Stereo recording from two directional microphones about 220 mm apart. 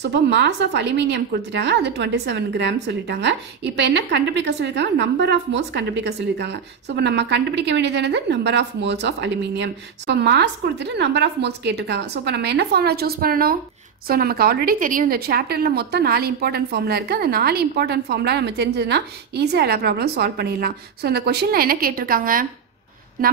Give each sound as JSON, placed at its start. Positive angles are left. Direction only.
{"t": 0.0, "sound": "a woman's voice", "side_deg": -50}